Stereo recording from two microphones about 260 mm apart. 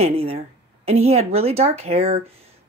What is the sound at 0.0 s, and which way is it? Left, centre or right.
Speech, right.